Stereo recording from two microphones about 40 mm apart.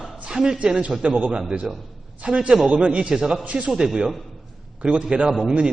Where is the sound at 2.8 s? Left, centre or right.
Right.